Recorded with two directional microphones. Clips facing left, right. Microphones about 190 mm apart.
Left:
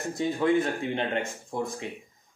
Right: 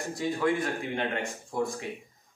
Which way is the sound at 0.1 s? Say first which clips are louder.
Left 4 dB; 25° left (ahead or behind).